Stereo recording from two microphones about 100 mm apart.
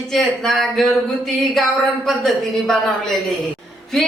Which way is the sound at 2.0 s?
Centre (ahead or behind).